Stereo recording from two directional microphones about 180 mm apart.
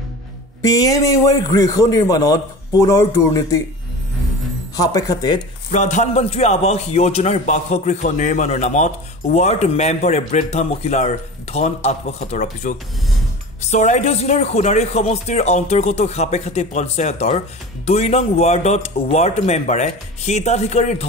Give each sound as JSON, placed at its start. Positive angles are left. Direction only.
{"t": 0.6, "sound": "a man's voice", "side_deg": 20}
{"t": 4.7, "sound": "a man's voice", "side_deg": 20}
{"t": 5.7, "sound": "a man's voice", "side_deg": 40}